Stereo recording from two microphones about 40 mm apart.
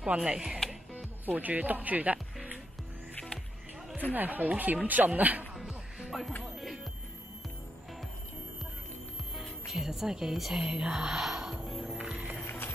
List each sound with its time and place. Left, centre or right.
0.2 s speech: right
1.2 s speech: right
4.1 s speech: right
5.6 s music: centre
9.4 s speech: centre
10.6 s speech: right
10.9 s speech: centre
11.5 s music: centre
11.8 s music: right